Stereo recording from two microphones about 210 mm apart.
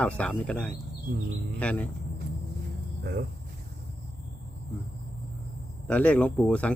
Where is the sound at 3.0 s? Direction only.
50° right (ahead or behind).